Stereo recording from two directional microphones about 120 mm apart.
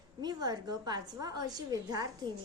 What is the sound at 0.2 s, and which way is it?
A woman's voice, 35° right (ahead or behind).